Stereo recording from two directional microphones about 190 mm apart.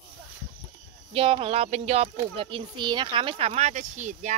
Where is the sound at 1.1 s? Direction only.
30° right (ahead or behind).